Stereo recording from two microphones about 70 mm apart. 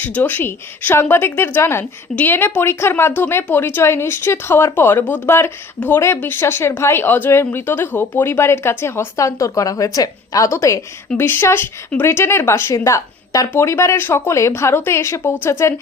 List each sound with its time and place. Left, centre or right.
0.0 s a woman's voice: left
10.5 s speech: left
11.2 s a woman's voice: left
12.7 s a woman's voice: left